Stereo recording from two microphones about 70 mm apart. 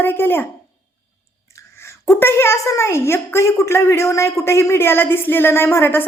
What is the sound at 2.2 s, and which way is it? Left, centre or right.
A woman's voice, left.